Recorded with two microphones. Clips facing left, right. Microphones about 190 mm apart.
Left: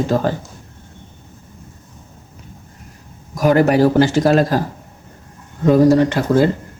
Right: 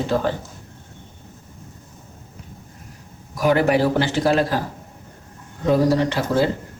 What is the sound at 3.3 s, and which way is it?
Speech, 45° left (ahead or behind).